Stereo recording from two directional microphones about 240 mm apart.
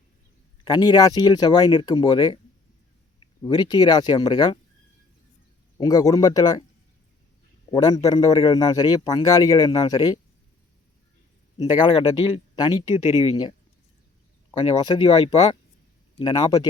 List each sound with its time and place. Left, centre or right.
0.6 s a man's voice: centre
5.7 s a man's voice: centre
7.7 s a man's voice: centre
11.5 s a man's voice: centre
14.6 s a man's voice: centre